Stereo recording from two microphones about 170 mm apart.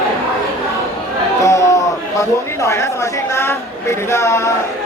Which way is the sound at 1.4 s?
20° left (ahead or behind).